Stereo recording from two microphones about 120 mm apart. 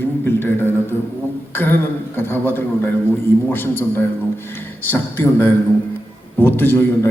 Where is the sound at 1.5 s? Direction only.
15° left (ahead or behind).